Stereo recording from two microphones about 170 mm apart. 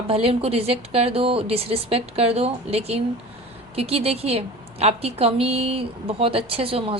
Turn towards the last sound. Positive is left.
turn(degrees=-35)  # may be behind; listen again after turning